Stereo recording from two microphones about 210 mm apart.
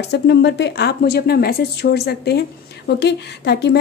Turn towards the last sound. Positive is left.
turn(degrees=55)  # may be behind; listen again after turning